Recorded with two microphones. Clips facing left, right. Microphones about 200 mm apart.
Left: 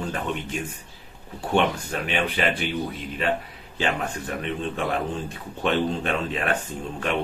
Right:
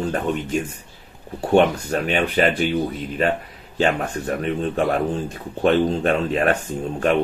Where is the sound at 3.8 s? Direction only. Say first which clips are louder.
Right 6 dB; 40° right (ahead or behind).